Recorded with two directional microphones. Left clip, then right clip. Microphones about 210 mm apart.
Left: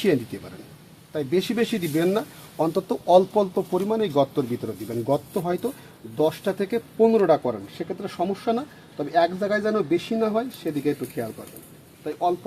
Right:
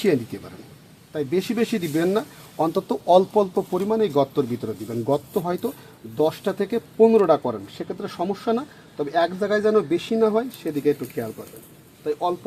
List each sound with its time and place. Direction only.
0.3 s speech: 20° right (ahead or behind)